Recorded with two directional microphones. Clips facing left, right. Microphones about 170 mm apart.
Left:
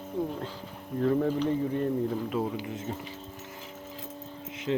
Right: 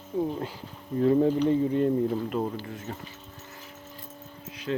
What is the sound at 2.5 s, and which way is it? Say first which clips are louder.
Speech: left 2 dB; 15° left (ahead or behind).